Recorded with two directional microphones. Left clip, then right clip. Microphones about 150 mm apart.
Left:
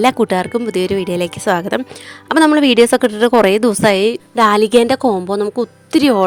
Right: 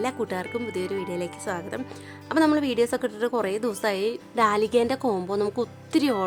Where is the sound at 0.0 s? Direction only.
65° left (ahead or behind).